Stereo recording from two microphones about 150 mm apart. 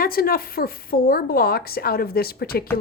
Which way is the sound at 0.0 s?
80° left.